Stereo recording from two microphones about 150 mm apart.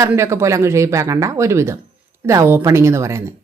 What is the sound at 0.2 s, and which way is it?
Speech, 20° right (ahead or behind).